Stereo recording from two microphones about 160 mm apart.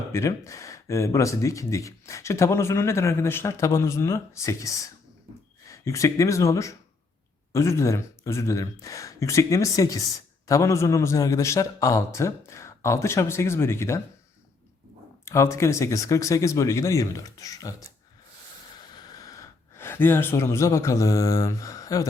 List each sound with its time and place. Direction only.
0.1 s speech: 20° left (ahead or behind)
15.2 s speech: 20° left (ahead or behind)
19.7 s speech: 15° left (ahead or behind)